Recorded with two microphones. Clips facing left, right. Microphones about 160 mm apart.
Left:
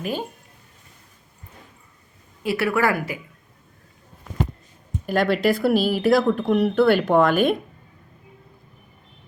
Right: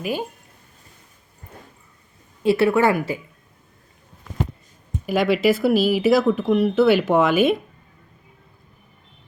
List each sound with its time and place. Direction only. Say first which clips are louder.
0.0 s speech: right 2 dB; 10° right (ahead or behind)
2.4 s a woman's voice: right 5 dB; 25° right (ahead or behind)
5.0 s speech: right 2 dB; centre (ahead or behind)